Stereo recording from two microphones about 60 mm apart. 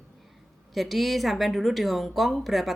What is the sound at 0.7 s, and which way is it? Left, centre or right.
Speech, centre.